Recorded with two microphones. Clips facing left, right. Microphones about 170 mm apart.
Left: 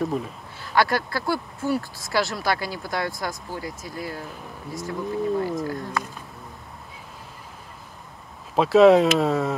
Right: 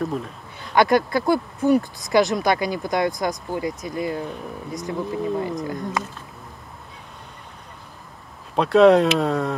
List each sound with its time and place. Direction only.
0.0 s speech: 5° left (ahead or behind)
0.7 s speech: 20° right (ahead or behind)
5.0 s speech: centre (ahead or behind)
8.5 s speech: centre (ahead or behind)